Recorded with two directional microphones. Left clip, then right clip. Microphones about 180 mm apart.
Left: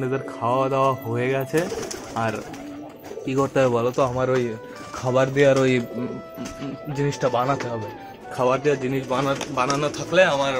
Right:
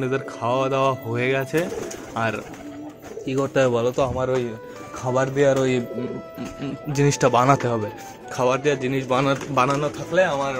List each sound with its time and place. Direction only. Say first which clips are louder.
0.0 s speech: even; centre (ahead or behind)
3.3 s a man's voice: even; 5° left (ahead or behind)
4.2 s speech: left 1 dB; 25° left (ahead or behind)
6.9 s speech: right 4 dB; 35° right (ahead or behind)
8.4 s speech: even; centre (ahead or behind)
9.1 s speech: right 3 dB; 35° right (ahead or behind)
9.8 s speech: even; 10° right (ahead or behind)
10.1 s speech: left 2 dB; centre (ahead or behind)